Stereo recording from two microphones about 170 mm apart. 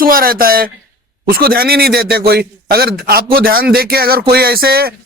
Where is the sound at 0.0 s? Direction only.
60° right (ahead or behind).